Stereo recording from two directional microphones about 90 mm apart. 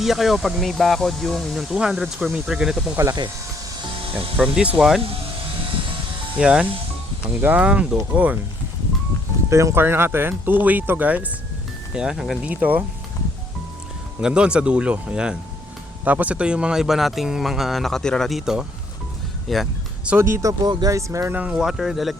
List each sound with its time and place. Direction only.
0.0 s speech: 5° right (ahead or behind)
3.8 s music: 85° right
4.4 s speech: 15° right (ahead or behind)
6.3 s speech: 15° right (ahead or behind)
9.5 s speech: 35° right (ahead or behind); by 11.3 s 20° right (ahead or behind)
11.9 s speech: 5° right (ahead or behind)
12.4 s speech: 20° right (ahead or behind)
14.2 s speech: 10° right (ahead or behind)
20.1 s speech: 15° right (ahead or behind)
20.4 s speech: 40° right (ahead or behind)
21.3 s speech: 10° right (ahead or behind)